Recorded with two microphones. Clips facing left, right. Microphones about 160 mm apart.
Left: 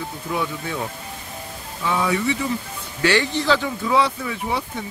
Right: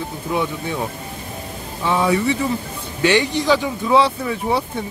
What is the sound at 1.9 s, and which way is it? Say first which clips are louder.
Speech: right 4 dB; 30° right (ahead or behind).